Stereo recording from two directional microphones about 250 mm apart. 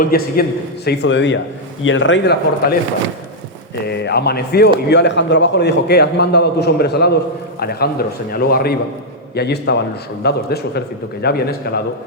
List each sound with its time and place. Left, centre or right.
0.0 s a man's voice: left
0.9 s speech: left
3.8 s a man's voice: left